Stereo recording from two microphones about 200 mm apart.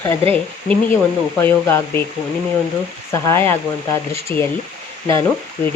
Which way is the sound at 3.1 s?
15° left (ahead or behind).